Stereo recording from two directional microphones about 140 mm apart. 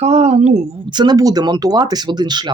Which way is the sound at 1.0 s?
30° right (ahead or behind).